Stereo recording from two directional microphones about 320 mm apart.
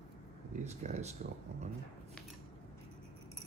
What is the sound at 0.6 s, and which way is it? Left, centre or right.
Speech, right.